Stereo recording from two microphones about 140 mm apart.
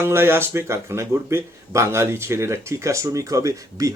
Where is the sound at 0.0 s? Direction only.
15° right (ahead or behind).